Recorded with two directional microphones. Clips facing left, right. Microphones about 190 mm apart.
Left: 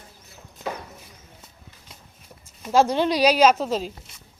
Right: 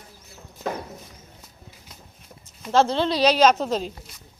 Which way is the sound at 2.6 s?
15° left (ahead or behind).